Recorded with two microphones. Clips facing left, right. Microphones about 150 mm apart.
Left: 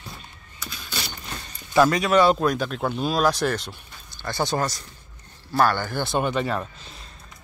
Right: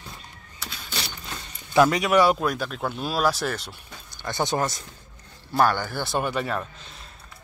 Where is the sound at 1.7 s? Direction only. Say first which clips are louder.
Left 1 dB; 15° right (ahead or behind).